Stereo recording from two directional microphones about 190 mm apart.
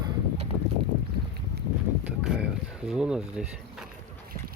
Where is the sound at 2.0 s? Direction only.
5° right (ahead or behind).